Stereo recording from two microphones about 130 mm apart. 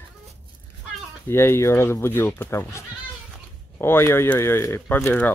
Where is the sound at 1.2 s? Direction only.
20° left (ahead or behind).